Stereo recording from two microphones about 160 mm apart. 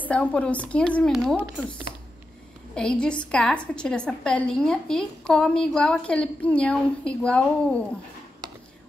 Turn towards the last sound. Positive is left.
turn(degrees=5)  # may be behind; listen again after turning